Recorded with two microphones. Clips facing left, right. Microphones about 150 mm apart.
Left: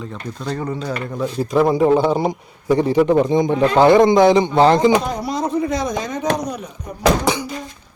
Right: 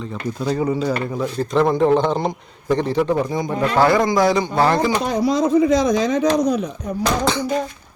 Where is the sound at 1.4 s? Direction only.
10° left (ahead or behind).